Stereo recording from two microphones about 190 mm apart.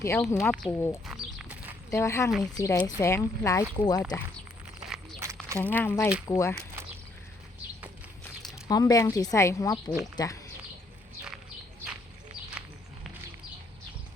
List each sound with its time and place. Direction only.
0.0 s speech: 15° left (ahead or behind)
1.0 s a sound: 5° right (ahead or behind)
1.9 s speech: 15° left (ahead or behind)
5.2 s a sound: 15° right (ahead or behind)
5.6 s speech: 10° left (ahead or behind)
8.6 s speech: 20° left (ahead or behind)